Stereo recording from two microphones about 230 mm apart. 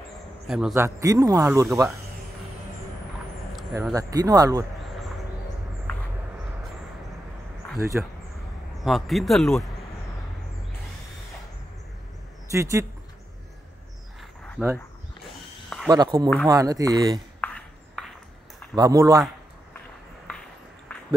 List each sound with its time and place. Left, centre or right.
0.5 s speech: centre
3.5 s a sound: centre
3.9 s speech: centre
5.9 s a sound: centre
7.9 s speech: centre
12.4 s speech: centre
14.6 s speech: centre
15.2 s a sound: centre
15.9 s speech: centre
17.4 s ping: centre
18.8 s speech: centre
20.9 s a sound: centre